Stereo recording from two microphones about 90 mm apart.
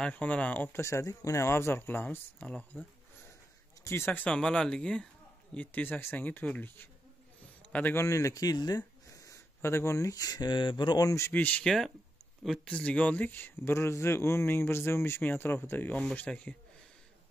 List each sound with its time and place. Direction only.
0.0 s speech: 15° left (ahead or behind)
0.7 s speech: 30° left (ahead or behind)
3.8 s a man's voice: 25° left (ahead or behind)
8.0 s speech: 35° left (ahead or behind); by 11.1 s 60° left (ahead or behind)
11.1 s speech: 30° left (ahead or behind)
11.3 s speech: 20° left (ahead or behind)
11.6 s speech: 5° left (ahead or behind)